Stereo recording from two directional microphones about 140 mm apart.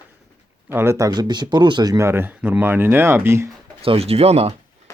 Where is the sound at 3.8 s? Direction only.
45° right (ahead or behind).